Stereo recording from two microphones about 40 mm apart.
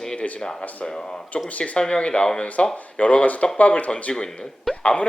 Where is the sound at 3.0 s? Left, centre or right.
Left.